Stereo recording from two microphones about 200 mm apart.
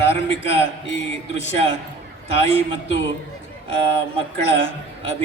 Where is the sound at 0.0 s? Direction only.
65° left (ahead or behind).